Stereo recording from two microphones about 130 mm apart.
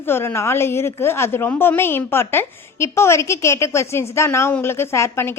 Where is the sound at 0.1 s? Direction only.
20° left (ahead or behind).